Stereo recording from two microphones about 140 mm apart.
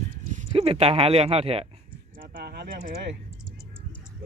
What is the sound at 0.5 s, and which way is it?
Speech, 45° right (ahead or behind).